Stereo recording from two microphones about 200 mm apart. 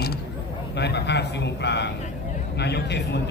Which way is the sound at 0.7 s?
55° left (ahead or behind).